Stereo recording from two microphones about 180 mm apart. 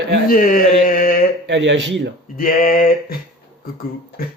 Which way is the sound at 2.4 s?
50° left (ahead or behind).